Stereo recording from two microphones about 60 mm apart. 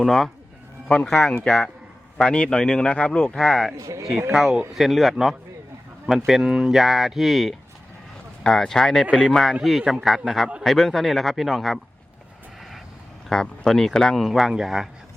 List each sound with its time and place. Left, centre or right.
0.0 s speech: centre
3.2 s speech: centre
3.8 s speech: right
4.3 s speech: centre
13.3 s speech: centre